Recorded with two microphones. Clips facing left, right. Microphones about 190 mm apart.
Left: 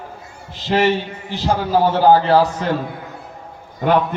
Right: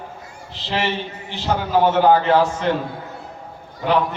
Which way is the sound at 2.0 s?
35° left (ahead or behind).